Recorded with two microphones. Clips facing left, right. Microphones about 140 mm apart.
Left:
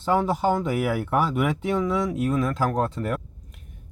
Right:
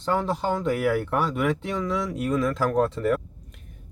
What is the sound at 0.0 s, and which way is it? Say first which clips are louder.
Speech: left 3 dB; 5° left (ahead or behind).